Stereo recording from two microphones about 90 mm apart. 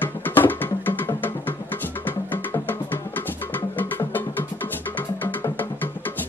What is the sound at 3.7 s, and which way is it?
Music, 20° left (ahead or behind).